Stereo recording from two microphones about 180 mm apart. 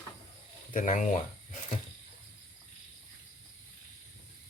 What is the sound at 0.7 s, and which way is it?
Speech, 45° left (ahead or behind).